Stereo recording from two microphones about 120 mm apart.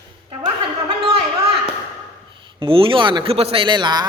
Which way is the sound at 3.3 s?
55° right (ahead or behind).